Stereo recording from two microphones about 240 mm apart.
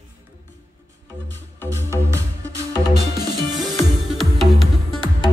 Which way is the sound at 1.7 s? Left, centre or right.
Centre.